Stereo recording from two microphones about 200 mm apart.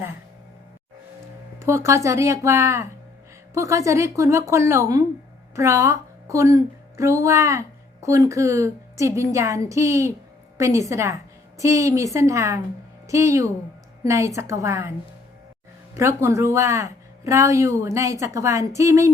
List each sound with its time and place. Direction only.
1.6 s a woman's voice: 15° right (ahead or behind)
16.0 s a woman's voice: 15° right (ahead or behind)